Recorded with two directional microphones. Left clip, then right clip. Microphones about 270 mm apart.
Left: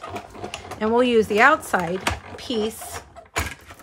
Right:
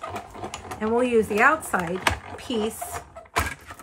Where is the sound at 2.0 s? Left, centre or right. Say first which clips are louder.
Right 1 dB; centre.